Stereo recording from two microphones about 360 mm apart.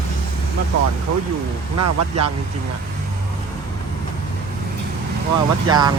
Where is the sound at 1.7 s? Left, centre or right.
Right.